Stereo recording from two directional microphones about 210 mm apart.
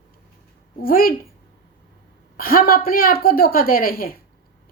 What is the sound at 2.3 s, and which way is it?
A woman's voice, 45° left (ahead or behind).